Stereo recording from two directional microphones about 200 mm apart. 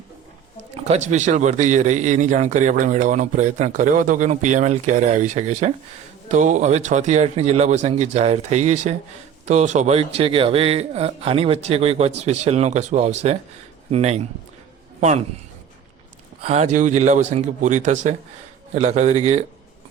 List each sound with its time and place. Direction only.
0.7 s a man's voice: 35° right (ahead or behind)
16.4 s a man's voice: 30° right (ahead or behind)